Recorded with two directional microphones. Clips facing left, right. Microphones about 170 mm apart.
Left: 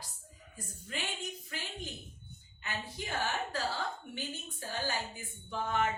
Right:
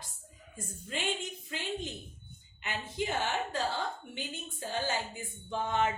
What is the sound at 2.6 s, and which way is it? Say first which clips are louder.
A woman's voice: right 5 dB; 20° right (ahead or behind).